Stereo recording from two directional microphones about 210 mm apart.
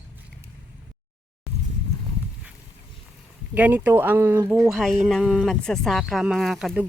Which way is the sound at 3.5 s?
10° right (ahead or behind).